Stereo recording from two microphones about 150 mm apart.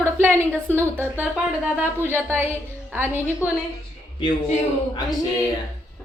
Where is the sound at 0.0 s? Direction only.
15° right (ahead or behind).